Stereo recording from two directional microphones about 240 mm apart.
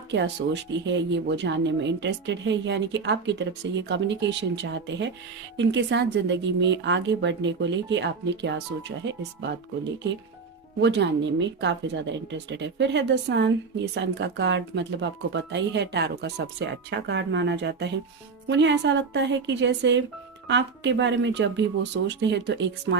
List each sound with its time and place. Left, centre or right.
0.1 s speech: right